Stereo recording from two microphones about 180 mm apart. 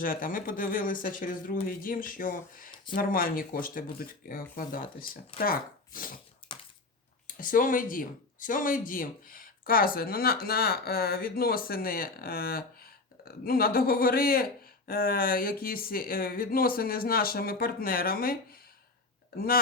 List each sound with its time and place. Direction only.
0.0 s speech: 50° left (ahead or behind)
6.5 s a sound: 25° left (ahead or behind)
7.3 s speech: 50° left (ahead or behind)